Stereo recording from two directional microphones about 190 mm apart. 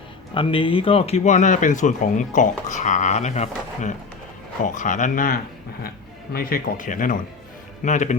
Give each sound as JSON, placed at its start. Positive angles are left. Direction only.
{"t": 0.3, "sound": "speech", "side_deg": 25}